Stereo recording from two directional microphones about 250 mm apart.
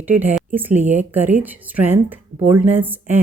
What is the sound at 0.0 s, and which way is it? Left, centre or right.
Speech, centre.